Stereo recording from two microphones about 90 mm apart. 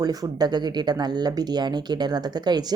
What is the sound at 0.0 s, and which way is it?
Speech, 45° right (ahead or behind).